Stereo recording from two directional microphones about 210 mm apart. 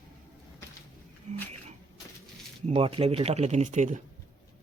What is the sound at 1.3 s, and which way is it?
Speech, 35° right (ahead or behind).